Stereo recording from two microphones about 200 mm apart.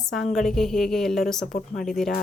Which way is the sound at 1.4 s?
50° left (ahead or behind).